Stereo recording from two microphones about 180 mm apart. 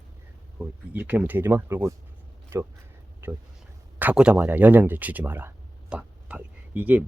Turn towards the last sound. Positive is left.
turn(degrees=-10)  # may be behind; listen again after turning